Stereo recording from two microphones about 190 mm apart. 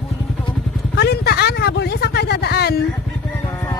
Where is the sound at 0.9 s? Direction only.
60° left (ahead or behind).